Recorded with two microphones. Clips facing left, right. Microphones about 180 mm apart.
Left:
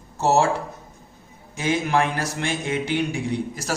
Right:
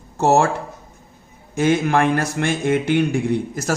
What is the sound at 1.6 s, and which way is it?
A man's voice, 55° right (ahead or behind).